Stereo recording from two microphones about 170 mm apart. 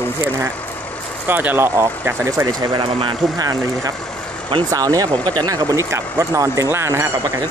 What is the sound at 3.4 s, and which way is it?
Speech, 20° right (ahead or behind).